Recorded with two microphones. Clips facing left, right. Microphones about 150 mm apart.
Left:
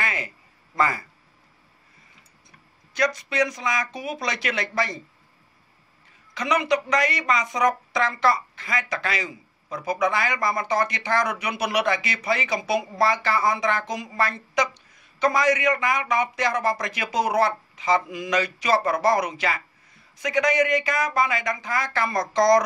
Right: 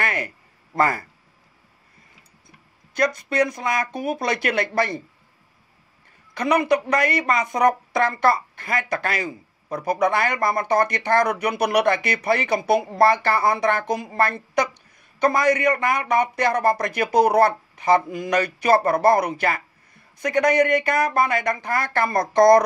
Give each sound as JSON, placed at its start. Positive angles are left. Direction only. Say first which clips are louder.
{"t": 0.0, "sound": "a sound", "louder": "right 4 dB", "side_deg": -60}
{"t": 0.7, "sound": "speech", "louder": "right 3 dB", "side_deg": -55}
{"t": 3.0, "sound": "speech", "louder": "right 3 dB", "side_deg": -55}
{"t": 6.3, "sound": "speech", "louder": "right 4 dB", "side_deg": -55}